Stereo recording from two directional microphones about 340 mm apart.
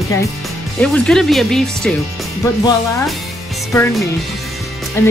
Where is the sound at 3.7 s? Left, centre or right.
Centre.